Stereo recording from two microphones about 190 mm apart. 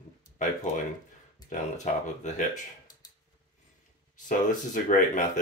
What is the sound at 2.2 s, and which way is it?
Speech, 40° left (ahead or behind).